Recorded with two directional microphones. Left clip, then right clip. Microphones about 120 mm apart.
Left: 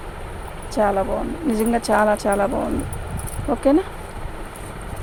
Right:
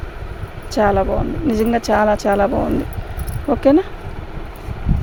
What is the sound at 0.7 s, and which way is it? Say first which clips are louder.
Speech: right 4 dB; 70° right (ahead or behind).